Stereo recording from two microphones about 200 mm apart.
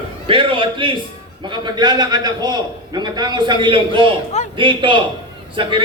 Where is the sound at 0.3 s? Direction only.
25° right (ahead or behind).